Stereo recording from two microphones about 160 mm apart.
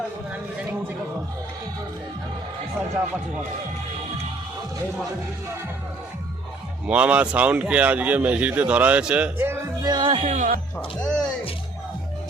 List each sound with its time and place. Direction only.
6.8 s speech: 10° right (ahead or behind)
9.8 s speech: 30° right (ahead or behind)
10.3 s speech: 55° right (ahead or behind)
10.8 s speech: 5° left (ahead or behind)